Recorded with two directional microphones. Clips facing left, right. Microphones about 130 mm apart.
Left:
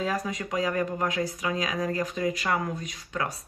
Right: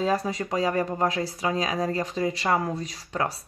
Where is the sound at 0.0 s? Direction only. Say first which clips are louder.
Right 4 dB; 30° right (ahead or behind).